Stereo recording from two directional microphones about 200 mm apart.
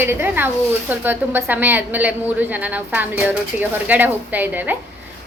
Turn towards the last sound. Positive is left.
turn(degrees=-10)  # may be behind; listen again after turning